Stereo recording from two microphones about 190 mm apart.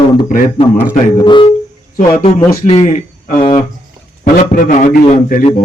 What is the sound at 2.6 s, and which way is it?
Speech, 35° left (ahead or behind).